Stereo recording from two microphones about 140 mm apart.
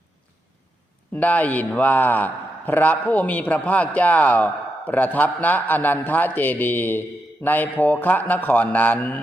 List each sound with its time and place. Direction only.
1.1 s a man's voice: 10° left (ahead or behind)